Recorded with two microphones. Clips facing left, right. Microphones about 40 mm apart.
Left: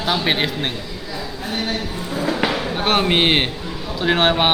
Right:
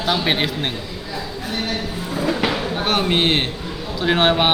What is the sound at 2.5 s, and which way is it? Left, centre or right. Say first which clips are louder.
Speech: left 1 dB; centre.